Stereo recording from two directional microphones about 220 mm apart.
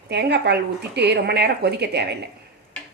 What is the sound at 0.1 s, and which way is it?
Speech, 50° right (ahead or behind).